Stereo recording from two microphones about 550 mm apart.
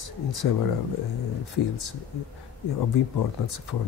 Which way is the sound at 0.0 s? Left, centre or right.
Left.